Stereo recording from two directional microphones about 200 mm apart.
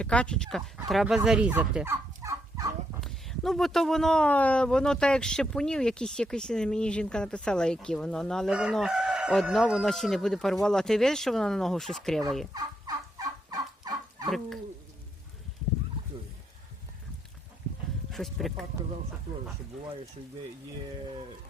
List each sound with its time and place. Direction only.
0.0 s speech: 5° left (ahead or behind); by 2.7 s 15° right (ahead or behind)
3.0 s speech: centre (ahead or behind)
12.5 s fowl: 20° right (ahead or behind)
14.3 s speech: centre (ahead or behind)
18.1 s speech: centre (ahead or behind)